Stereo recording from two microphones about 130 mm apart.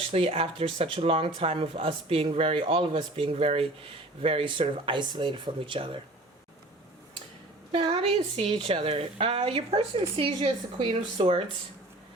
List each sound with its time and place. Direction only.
0.0 s speech: 45° right (ahead or behind)
7.7 s speech: 45° right (ahead or behind)